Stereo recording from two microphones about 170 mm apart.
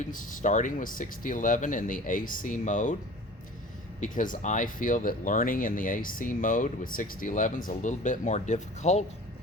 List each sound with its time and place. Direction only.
0.0 s speech: 50° left (ahead or behind)
4.0 s speech: 50° left (ahead or behind)